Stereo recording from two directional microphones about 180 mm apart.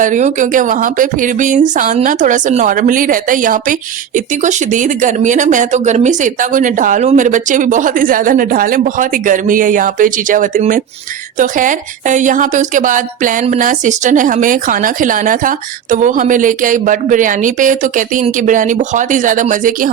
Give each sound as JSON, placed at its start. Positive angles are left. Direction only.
{"t": 0.0, "sound": "speech", "side_deg": -45}